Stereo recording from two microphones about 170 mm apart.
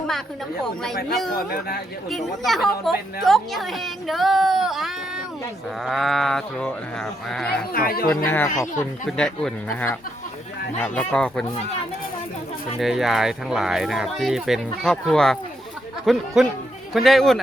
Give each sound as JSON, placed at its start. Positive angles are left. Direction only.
{"t": 0.6, "sound": "a woman's voice", "side_deg": 5}
{"t": 1.5, "sound": "speech", "side_deg": 65}
{"t": 2.0, "sound": "a woman's voice", "side_deg": 0}
{"t": 7.7, "sound": "speech", "side_deg": 60}
{"t": 8.1, "sound": "a woman's voice", "side_deg": 10}
{"t": 12.8, "sound": "a woman's voice", "side_deg": 0}